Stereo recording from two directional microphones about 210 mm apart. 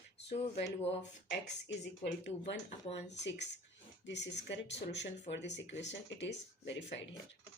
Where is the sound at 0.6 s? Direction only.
30° left (ahead or behind).